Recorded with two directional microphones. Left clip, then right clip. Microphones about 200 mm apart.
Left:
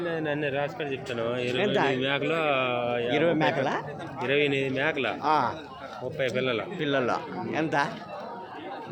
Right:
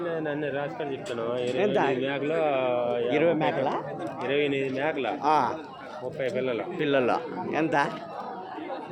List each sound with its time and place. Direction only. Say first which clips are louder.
0.1 s speech: left 2 dB; 35° left (ahead or behind)
1.5 s speech: right 1 dB; 5° left (ahead or behind)
1.9 s a man's voice: left 1 dB; 45° left (ahead or behind)
3.1 s speech: left 1 dB; 10° left (ahead or behind)
4.2 s speech: left 2 dB; 40° left (ahead or behind)
5.2 s a man's voice: right 2 dB; centre (ahead or behind)
6.1 s speech: left 1 dB; 40° left (ahead or behind)
6.7 s a man's voice: right 5 dB; centre (ahead or behind)